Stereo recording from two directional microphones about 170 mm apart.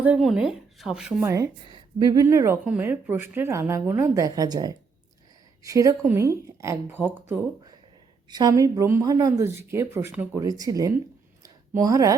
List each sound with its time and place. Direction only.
0.0 s speech: 5° right (ahead or behind)
1.2 s speech: 15° right (ahead or behind)
1.7 s a sound: 25° right (ahead or behind)
2.2 s speech: 15° right (ahead or behind)
8.3 s speech: 25° right (ahead or behind)
11.4 s a sound: 20° right (ahead or behind)